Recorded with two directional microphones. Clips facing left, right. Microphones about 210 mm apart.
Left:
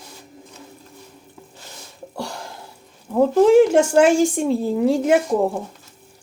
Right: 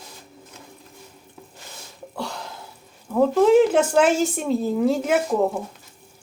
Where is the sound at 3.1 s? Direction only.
15° left (ahead or behind).